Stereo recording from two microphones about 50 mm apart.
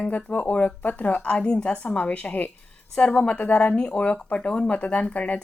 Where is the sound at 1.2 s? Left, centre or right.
Centre.